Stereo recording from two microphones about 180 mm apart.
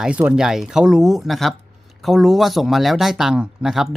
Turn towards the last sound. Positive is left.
turn(degrees=0)  # may be behind; listen again after turning